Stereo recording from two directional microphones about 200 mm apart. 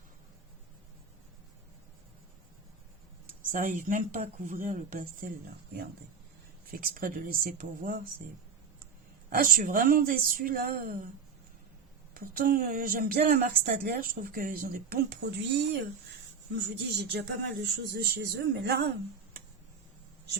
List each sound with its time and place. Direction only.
3.5 s speech: 40° right (ahead or behind)
6.7 s speech: 45° right (ahead or behind)
9.3 s speech: 45° right (ahead or behind)
12.1 s speech: 45° right (ahead or behind)